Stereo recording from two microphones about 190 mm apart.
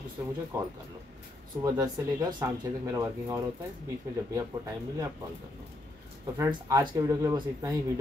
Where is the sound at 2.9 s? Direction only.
15° right (ahead or behind).